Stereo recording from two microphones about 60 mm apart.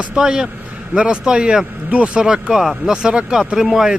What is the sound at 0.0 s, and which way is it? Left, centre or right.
A man's voice, centre.